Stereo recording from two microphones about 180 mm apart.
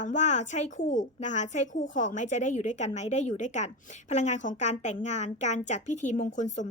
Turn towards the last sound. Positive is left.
turn(degrees=45)  # may be behind; listen again after turning